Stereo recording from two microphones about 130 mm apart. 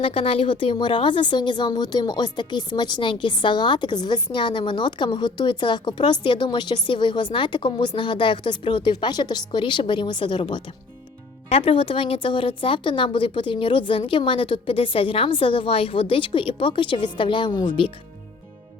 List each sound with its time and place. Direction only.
0.0 s a woman's voice: 45° left (ahead or behind)
11.4 s a woman's voice: 45° left (ahead or behind)